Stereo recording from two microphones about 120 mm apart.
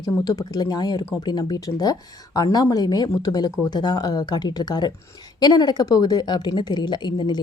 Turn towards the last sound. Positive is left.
turn(degrees=40)  # may be behind; listen again after turning